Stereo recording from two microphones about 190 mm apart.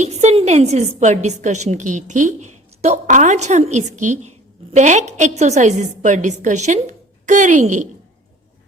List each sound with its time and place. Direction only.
0.0 s a woman's voice: 35° right (ahead or behind)